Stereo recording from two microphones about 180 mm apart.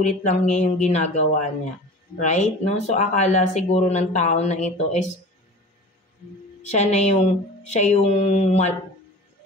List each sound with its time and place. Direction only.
0.0 s speech: 40° left (ahead or behind)
6.6 s speech: 40° left (ahead or behind)